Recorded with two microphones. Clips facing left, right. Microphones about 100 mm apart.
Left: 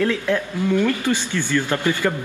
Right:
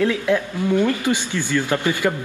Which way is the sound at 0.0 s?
15° right (ahead or behind).